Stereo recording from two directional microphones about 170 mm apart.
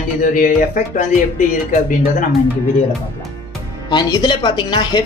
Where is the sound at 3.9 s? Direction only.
25° left (ahead or behind).